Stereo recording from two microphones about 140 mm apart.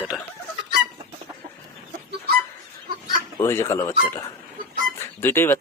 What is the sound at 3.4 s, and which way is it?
Speech, 20° left (ahead or behind).